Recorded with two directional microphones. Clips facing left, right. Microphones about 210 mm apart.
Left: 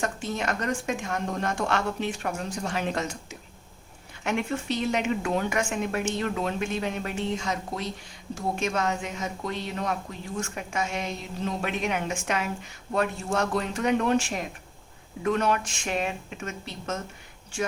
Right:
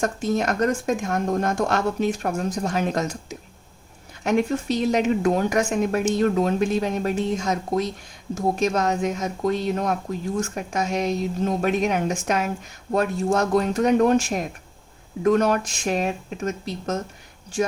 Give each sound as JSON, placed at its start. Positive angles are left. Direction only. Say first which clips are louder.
{"t": 0.0, "sound": "speech", "louder": "right 7 dB", "side_deg": -40}